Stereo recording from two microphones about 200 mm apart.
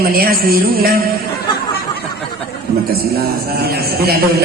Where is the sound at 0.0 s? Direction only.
50° right (ahead or behind).